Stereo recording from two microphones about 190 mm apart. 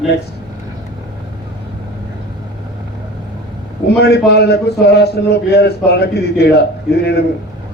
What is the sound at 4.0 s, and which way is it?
A man's voice, 60° left (ahead or behind).